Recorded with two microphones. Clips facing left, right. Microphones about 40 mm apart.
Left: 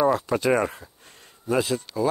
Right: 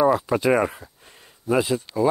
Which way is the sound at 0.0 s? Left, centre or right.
Centre.